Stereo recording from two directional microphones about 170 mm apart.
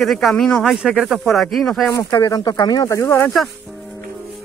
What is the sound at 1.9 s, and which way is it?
Speech, 20° left (ahead or behind).